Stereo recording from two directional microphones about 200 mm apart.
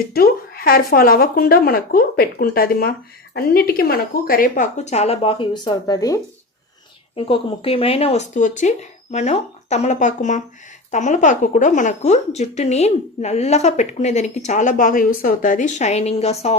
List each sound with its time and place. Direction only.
0.1 s a woman's voice: 50° left (ahead or behind); by 6.2 s 20° left (ahead or behind)
7.2 s speech: 30° left (ahead or behind)